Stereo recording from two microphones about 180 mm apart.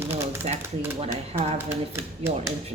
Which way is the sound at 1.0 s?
35° right (ahead or behind).